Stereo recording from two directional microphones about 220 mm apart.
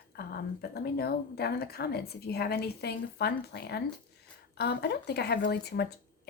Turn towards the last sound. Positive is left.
turn(degrees=45)  # may be behind; listen again after turning